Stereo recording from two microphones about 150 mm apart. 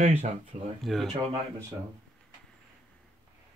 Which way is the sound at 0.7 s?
Centre (ahead or behind).